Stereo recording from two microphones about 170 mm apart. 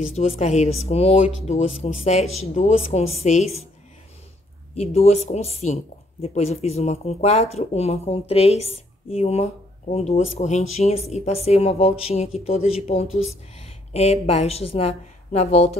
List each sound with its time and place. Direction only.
0.0 s speech: 40° left (ahead or behind)
4.7 s speech: 40° left (ahead or behind)